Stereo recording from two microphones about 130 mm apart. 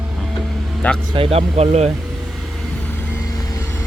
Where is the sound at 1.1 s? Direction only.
50° right (ahead or behind).